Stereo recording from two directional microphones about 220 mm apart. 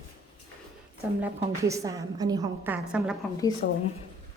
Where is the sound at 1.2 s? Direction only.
15° right (ahead or behind).